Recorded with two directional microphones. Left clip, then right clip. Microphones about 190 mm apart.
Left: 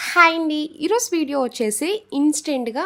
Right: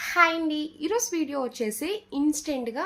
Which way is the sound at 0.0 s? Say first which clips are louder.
Left 7 dB; 60° left (ahead or behind).